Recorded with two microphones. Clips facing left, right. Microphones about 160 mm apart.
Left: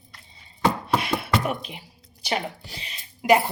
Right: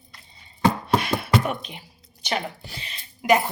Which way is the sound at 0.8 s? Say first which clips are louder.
Right 2 dB; 25° left (ahead or behind).